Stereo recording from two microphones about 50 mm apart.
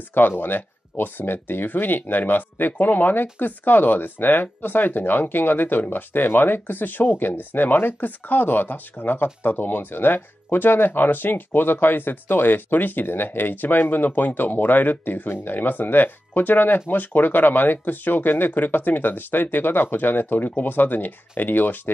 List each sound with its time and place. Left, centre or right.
0.1 s speech: left